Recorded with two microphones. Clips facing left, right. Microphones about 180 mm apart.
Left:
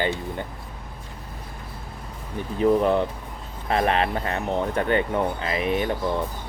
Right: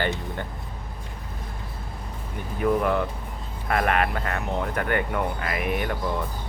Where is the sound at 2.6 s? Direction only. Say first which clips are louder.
Left 3 dB; 25° left (ahead or behind).